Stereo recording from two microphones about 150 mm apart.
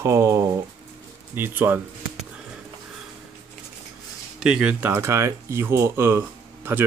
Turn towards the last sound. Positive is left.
turn(degrees=-15)  # may be behind; listen again after turning